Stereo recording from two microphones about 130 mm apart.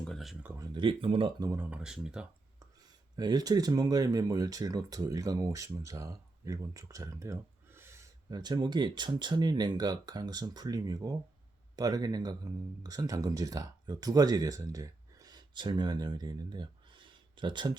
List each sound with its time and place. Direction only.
0.0 s a sound: centre (ahead or behind)
0.6 s speech: 35° right (ahead or behind)
1.7 s speech: 5° right (ahead or behind)
3.2 s speech: 30° right (ahead or behind)